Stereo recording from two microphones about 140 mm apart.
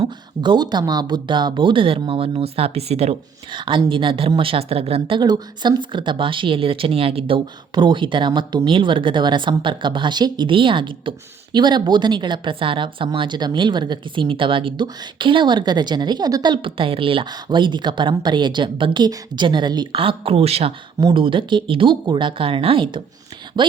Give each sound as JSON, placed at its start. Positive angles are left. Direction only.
{"t": 0.0, "sound": "speech", "side_deg": -35}
{"t": 3.5, "sound": "speech", "side_deg": -35}